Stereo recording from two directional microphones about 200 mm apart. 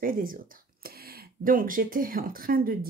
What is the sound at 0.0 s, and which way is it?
Speech, 45° right (ahead or behind).